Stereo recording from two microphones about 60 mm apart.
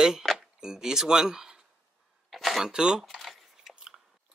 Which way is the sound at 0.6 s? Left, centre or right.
Centre.